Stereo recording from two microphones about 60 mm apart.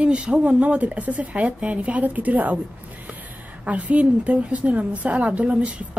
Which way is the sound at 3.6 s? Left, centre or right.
Right.